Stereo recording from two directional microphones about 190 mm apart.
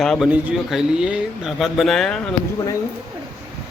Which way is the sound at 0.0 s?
5° left (ahead or behind).